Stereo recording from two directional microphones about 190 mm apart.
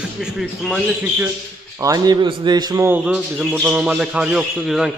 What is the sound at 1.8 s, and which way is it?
A man's voice, 20° right (ahead or behind).